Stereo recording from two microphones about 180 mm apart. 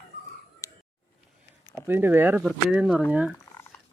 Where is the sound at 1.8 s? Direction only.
10° right (ahead or behind).